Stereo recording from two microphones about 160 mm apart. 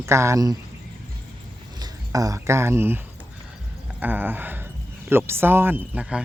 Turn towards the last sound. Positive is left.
turn(degrees=-10)  # may be behind; listen again after turning